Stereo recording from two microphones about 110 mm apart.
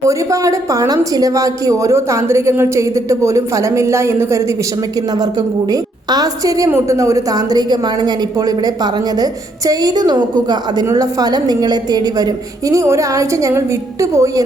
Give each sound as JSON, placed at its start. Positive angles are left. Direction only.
{"t": 0.0, "sound": "a woman's voice", "side_deg": -30}
{"t": 4.9, "sound": "a woman's voice", "side_deg": -35}